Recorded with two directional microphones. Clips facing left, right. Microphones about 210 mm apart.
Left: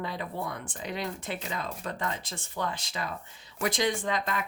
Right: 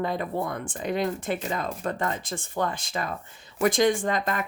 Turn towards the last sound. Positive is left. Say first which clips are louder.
# right 4 dB
turn(degrees=-50)  # may be behind; listen again after turning